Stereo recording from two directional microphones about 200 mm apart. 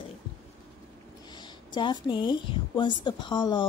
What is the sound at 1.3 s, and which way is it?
A woman's voice, 20° left (ahead or behind).